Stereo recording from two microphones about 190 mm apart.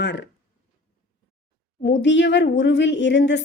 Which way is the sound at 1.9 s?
70° left (ahead or behind).